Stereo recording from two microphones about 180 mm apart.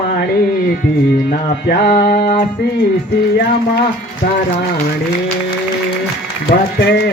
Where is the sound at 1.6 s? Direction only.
60° left (ahead or behind).